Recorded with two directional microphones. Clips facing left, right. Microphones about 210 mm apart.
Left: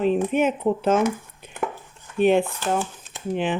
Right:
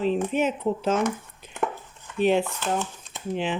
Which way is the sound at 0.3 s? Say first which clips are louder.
Left 3 dB; 55° left (ahead or behind).